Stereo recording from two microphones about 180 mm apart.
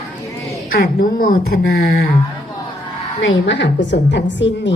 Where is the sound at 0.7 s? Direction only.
50° left (ahead or behind).